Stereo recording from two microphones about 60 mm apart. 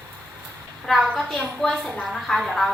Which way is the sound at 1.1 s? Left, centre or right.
Centre.